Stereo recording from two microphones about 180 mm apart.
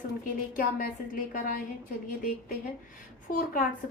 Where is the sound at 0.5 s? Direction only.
50° left (ahead or behind).